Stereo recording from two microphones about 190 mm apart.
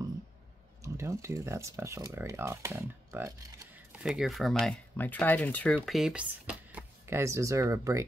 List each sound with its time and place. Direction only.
0.8 s speech: 15° right (ahead or behind)